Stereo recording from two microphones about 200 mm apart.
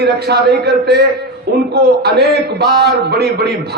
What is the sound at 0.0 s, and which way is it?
A man's voice, 55° right (ahead or behind).